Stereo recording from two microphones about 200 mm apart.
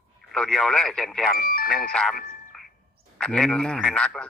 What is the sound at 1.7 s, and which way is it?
A man's voice, 5° left (ahead or behind).